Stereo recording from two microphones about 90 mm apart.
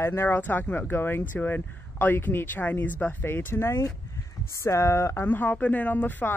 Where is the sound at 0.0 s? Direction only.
25° left (ahead or behind).